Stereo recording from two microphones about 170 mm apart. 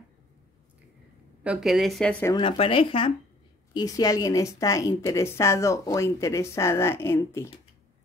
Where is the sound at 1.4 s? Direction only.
5° right (ahead or behind).